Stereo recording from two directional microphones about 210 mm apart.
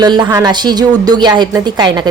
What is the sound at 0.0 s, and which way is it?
Speech, 20° right (ahead or behind).